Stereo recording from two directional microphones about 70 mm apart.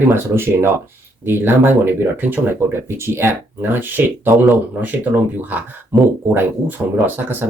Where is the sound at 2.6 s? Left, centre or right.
Right.